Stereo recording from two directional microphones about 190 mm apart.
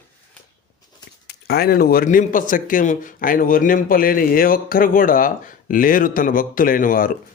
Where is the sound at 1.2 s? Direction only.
55° left (ahead or behind).